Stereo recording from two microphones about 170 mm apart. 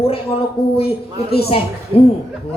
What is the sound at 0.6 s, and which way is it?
Speech, 70° left (ahead or behind).